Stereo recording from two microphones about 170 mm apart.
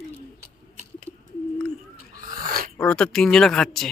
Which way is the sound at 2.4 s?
55° right (ahead or behind).